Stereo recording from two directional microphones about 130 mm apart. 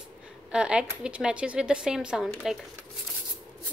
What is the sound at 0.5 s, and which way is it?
Speech, 5° right (ahead or behind).